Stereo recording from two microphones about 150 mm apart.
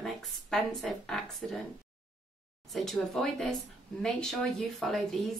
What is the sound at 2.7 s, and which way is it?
A woman's voice, centre (ahead or behind).